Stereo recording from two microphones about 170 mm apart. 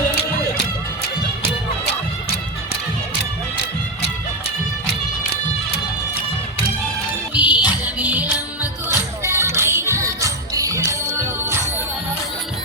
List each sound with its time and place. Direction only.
7.3 s music: 10° right (ahead or behind)